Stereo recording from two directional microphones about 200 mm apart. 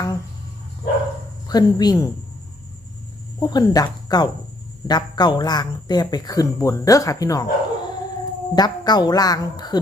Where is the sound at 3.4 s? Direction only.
20° left (ahead or behind).